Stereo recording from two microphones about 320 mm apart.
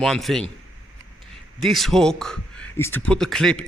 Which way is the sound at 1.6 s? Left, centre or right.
Centre.